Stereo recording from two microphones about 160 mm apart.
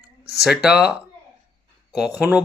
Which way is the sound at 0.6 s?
5° right (ahead or behind).